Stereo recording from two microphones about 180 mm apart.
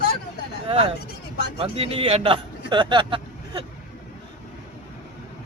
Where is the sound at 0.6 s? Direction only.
30° right (ahead or behind).